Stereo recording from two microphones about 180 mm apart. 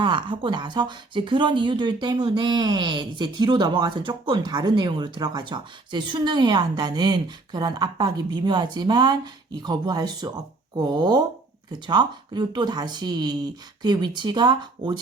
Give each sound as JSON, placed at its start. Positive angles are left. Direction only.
{"t": 0.0, "sound": "speech", "side_deg": -25}